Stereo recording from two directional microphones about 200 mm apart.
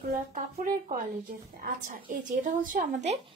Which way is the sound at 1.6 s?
45° right (ahead or behind).